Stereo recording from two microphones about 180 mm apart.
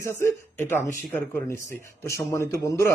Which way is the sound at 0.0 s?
15° left (ahead or behind).